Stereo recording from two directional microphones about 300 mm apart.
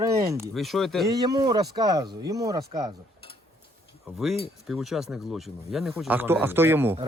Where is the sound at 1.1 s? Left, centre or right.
Centre.